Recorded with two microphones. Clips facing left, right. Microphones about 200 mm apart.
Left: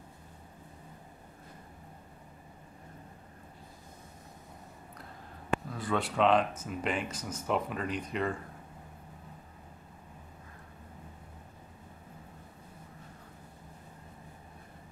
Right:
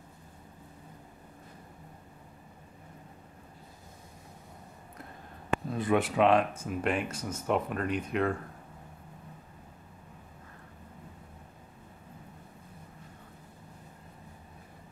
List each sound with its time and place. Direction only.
5.7 s speech: 20° right (ahead or behind); by 8.3 s centre (ahead or behind)